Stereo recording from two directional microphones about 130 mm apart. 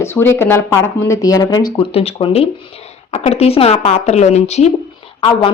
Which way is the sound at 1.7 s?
45° left (ahead or behind).